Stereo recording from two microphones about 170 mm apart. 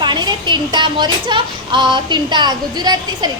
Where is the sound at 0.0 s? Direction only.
25° right (ahead or behind).